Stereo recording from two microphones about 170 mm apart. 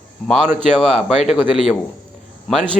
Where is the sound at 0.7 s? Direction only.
5° left (ahead or behind).